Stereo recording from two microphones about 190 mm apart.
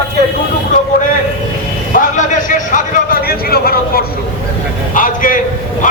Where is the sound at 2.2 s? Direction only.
40° left (ahead or behind).